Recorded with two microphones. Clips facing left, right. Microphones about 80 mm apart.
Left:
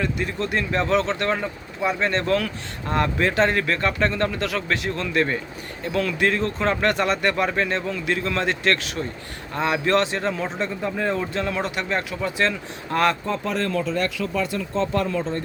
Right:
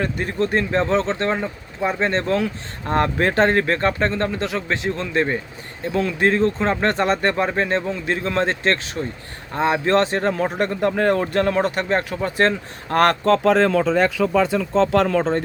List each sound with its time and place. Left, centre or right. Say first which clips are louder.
0.0 s speech: right 3 dB; right
2.9 s speech: right 3 dB; right
10.6 s speech: right 8 dB; right
13.2 s speech: right 9 dB; right